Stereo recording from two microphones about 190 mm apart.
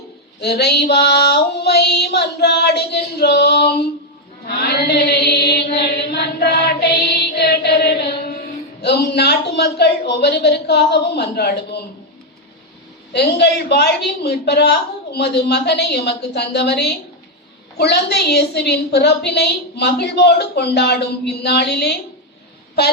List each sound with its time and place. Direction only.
0.4 s a woman's voice: 60° left (ahead or behind)
4.4 s mantra: 60° left (ahead or behind)
7.3 s chant: 60° left (ahead or behind)
8.8 s a woman's voice: 60° left (ahead or behind)
13.1 s a woman's voice: 60° left (ahead or behind)